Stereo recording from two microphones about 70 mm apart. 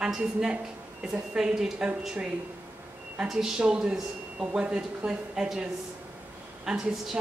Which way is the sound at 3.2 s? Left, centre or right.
Centre.